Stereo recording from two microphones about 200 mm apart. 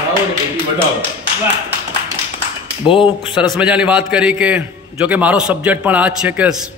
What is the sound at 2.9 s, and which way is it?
Speech, 25° left (ahead or behind).